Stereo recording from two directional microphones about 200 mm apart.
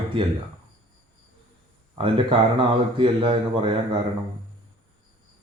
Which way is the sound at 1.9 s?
25° right (ahead or behind).